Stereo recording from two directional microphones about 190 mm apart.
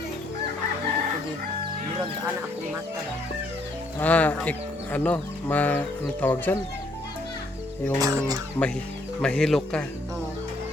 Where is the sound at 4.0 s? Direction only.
10° left (ahead or behind).